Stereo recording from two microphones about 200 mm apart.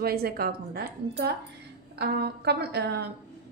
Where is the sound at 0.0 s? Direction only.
50° right (ahead or behind).